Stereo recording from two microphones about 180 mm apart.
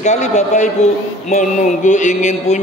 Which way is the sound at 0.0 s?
40° left (ahead or behind).